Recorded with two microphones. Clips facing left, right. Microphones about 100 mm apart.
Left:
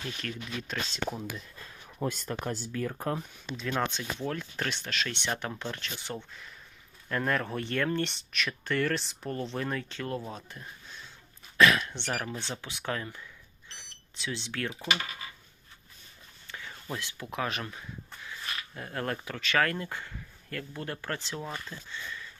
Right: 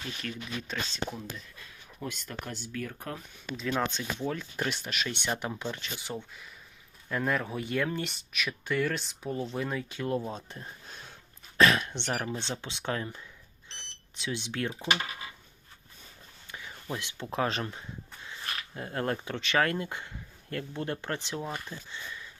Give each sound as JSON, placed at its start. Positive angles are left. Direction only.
{"t": 0.2, "sound": "speech", "side_deg": -5}
{"t": 2.0, "sound": "speech", "side_deg": 40}
{"t": 3.6, "sound": "speech", "side_deg": 0}
{"t": 10.8, "sound": "sniff", "side_deg": -55}
{"t": 11.5, "sound": "speech", "side_deg": -25}
{"t": 13.7, "sound": "smoke detector", "side_deg": -20}
{"t": 16.5, "sound": "a sound", "side_deg": -15}
{"t": 17.3, "sound": "speech", "side_deg": -30}